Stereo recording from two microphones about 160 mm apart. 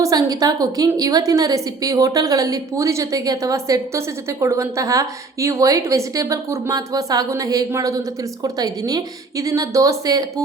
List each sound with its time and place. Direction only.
0.0 s a woman's voice: 20° right (ahead or behind)